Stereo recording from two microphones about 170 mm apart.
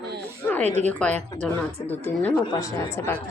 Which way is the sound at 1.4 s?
10° left (ahead or behind).